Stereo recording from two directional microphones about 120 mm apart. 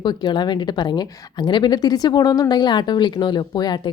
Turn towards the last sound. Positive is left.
turn(degrees=35)  # may be behind; listen again after turning